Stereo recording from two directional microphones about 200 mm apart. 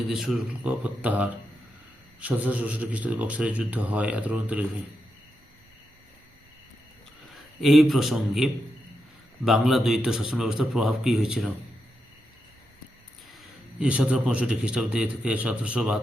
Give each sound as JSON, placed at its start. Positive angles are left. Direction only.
{"t": 0.1, "sound": "speech", "side_deg": 0}
{"t": 7.6, "sound": "a man's voice", "side_deg": 0}
{"t": 13.7, "sound": "a man's voice", "side_deg": -5}